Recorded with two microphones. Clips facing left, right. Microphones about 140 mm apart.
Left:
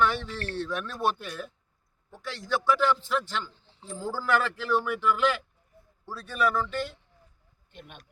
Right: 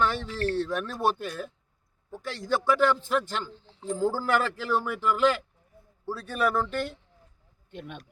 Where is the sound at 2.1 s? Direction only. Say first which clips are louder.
Right 2 dB; 45° right (ahead or behind).